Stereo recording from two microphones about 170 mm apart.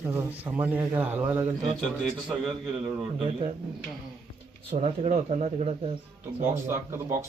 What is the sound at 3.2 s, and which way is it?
Speech, 35° right (ahead or behind).